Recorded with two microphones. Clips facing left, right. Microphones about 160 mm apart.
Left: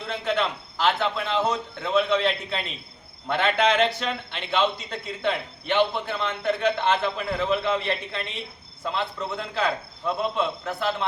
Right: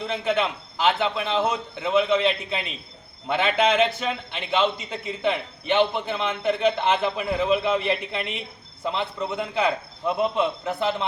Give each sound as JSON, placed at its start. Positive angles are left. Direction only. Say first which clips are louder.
{"t": 0.1, "sound": "a man's voice", "louder": "right 1 dB", "side_deg": -10}